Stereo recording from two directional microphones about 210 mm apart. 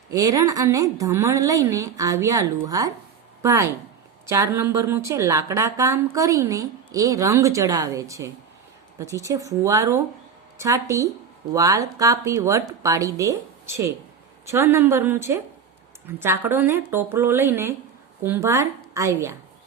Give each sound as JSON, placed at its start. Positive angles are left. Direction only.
{"t": 0.1, "sound": "a woman's voice", "side_deg": -15}
{"t": 14.4, "sound": "a woman's voice", "side_deg": -15}